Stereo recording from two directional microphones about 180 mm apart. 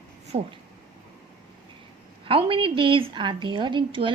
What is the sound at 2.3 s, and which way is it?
A woman's voice, 30° right (ahead or behind).